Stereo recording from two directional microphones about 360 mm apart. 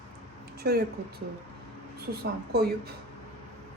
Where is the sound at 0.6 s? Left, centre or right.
Right.